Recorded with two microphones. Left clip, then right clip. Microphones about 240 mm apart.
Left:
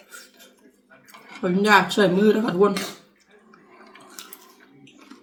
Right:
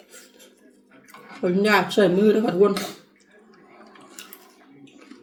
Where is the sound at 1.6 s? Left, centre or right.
Centre.